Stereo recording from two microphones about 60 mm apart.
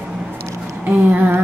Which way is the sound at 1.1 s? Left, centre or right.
Right.